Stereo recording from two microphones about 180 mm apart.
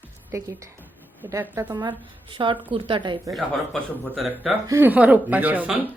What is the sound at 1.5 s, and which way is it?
A woman's voice, 20° right (ahead or behind).